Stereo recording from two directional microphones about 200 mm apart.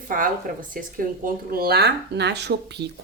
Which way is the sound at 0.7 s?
45° right (ahead or behind).